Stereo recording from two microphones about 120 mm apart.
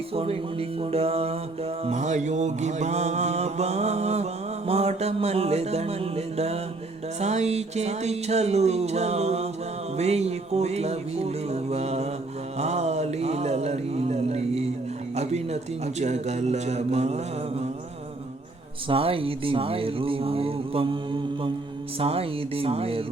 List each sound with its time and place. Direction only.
0.1 s speech: 55° right (ahead or behind)
0.8 s mantra: 55° right (ahead or behind)
1.8 s mantra: 75° right (ahead or behind)
15.1 s speech: 65° right (ahead or behind)
16.0 s mantra: 70° right (ahead or behind)
18.9 s speech: 50° right (ahead or behind)
21.9 s speech: 55° right (ahead or behind)